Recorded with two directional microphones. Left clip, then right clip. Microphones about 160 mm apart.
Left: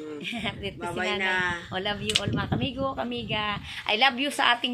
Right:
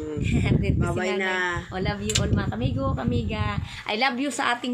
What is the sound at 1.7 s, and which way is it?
A woman's voice, 10° left (ahead or behind).